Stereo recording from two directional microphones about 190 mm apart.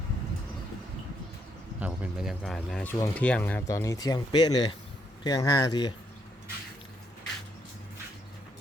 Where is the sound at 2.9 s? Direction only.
10° left (ahead or behind).